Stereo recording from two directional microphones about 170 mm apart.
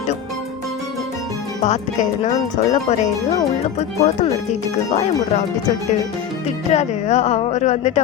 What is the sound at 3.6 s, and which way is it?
Music, 40° left (ahead or behind).